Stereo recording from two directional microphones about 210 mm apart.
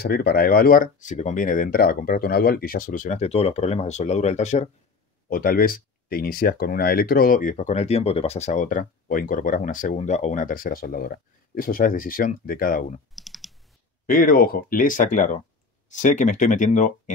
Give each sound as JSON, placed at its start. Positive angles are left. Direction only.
{"t": 0.0, "sound": "speech", "side_deg": 45}
{"t": 5.3, "sound": "speech", "side_deg": 45}
{"t": 13.1, "sound": "computer keyboard", "side_deg": 0}
{"t": 14.0, "sound": "speech", "side_deg": 40}